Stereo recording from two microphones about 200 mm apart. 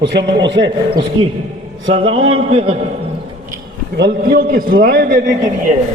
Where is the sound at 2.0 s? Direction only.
25° right (ahead or behind).